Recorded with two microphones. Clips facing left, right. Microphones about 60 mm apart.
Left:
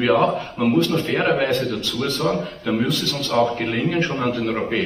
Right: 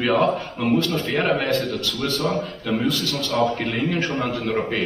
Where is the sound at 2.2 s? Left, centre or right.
Centre.